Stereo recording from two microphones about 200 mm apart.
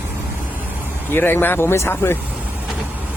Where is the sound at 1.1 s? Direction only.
10° left (ahead or behind).